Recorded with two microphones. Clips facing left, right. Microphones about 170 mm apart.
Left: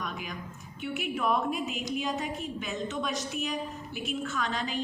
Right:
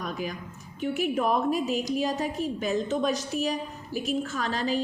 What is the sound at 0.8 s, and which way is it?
A woman's voice, 40° right (ahead or behind).